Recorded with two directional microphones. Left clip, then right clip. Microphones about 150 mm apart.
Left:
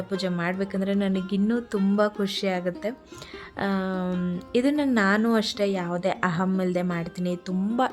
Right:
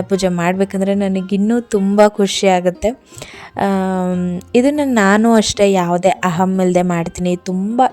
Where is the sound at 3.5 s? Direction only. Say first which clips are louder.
Right 11 dB; 45° right (ahead or behind).